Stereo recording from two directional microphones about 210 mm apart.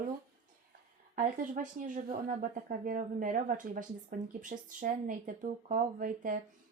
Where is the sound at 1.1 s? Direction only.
40° right (ahead or behind).